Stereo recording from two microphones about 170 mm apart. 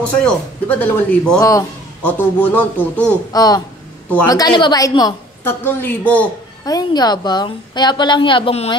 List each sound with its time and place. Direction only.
0.2 s speech: 10° left (ahead or behind)
1.4 s a man's voice: 20° left (ahead or behind)
3.3 s a woman's voice: 20° left (ahead or behind)
6.6 s a woman's voice: 20° left (ahead or behind)